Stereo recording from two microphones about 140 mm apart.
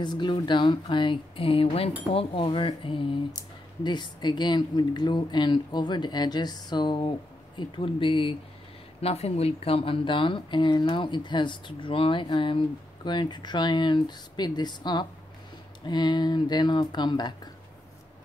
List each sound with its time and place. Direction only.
0.0 s speech: 30° left (ahead or behind)